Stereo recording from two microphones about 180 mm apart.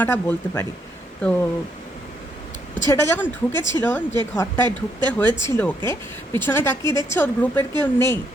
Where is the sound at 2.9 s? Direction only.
15° left (ahead or behind).